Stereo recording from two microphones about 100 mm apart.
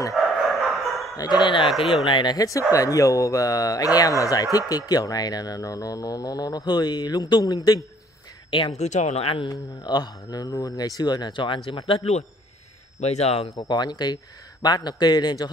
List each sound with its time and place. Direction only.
0.1 s dog: centre (ahead or behind)
1.1 s speech: 40° left (ahead or behind)
8.5 s speech: 55° left (ahead or behind)
8.7 s speech: 90° left; by 9.5 s 70° left (ahead or behind)
9.5 s speech: 45° left (ahead or behind); by 12.2 s 75° left (ahead or behind)
13.0 s speech: 90° left
13.6 s speech: 45° left (ahead or behind)